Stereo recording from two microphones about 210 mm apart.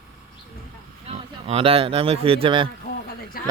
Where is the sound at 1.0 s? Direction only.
30° right (ahead or behind).